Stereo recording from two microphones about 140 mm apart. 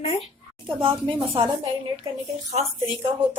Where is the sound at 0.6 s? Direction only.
35° right (ahead or behind).